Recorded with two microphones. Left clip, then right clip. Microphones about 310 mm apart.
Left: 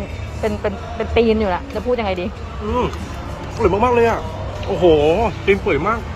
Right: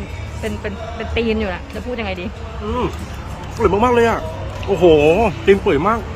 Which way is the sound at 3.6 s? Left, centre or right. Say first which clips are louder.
Right 1 dB; right.